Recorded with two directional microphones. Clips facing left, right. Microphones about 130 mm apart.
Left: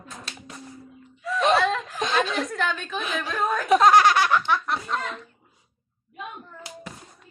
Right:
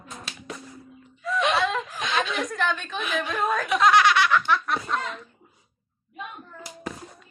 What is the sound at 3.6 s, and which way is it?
Speech, 40° left (ahead or behind).